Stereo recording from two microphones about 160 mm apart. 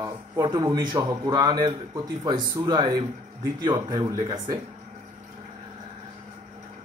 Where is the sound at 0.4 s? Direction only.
30° right (ahead or behind).